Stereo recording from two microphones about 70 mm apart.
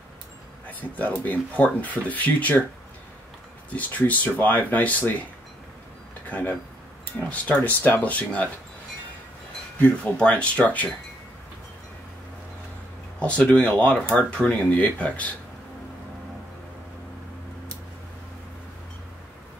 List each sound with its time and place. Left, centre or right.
0.7 s speech: left
3.7 s speech: left
6.2 s speech: left
9.8 s speech: centre
13.2 s speech: centre